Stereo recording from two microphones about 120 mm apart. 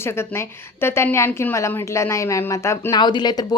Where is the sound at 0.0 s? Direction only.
20° left (ahead or behind).